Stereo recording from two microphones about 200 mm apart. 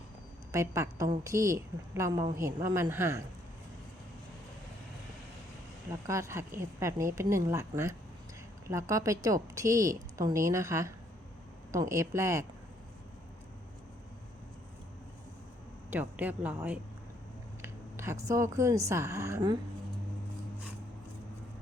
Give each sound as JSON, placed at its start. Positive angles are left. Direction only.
{"t": 0.5, "sound": "a woman's voice", "side_deg": -15}
{"t": 6.1, "sound": "a woman's voice", "side_deg": -15}
{"t": 15.9, "sound": "a woman's voice", "side_deg": -10}